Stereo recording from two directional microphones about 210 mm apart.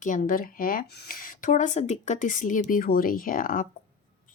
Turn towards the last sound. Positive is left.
turn(degrees=40)  # may be behind; listen again after turning